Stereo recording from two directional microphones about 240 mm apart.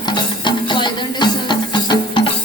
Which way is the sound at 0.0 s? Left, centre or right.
Centre.